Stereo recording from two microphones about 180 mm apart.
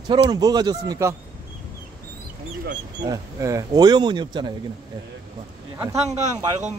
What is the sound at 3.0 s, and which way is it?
Speech, 20° right (ahead or behind).